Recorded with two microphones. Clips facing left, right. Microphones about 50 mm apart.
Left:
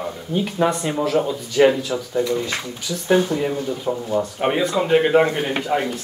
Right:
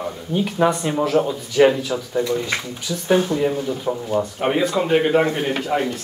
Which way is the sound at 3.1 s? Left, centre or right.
Centre.